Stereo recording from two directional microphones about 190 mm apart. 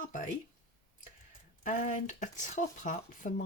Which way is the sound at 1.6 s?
45° left (ahead or behind).